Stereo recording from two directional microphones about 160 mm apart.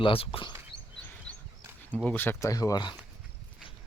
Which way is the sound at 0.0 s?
35° left (ahead or behind).